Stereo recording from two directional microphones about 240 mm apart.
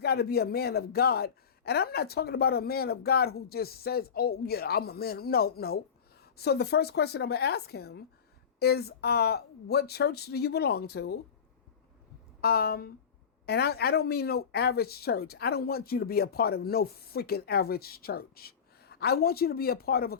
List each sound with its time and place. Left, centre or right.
0.0 s a woman's voice: left
12.4 s speech: left